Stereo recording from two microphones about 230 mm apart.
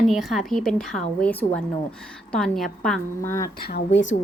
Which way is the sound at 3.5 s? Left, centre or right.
Left.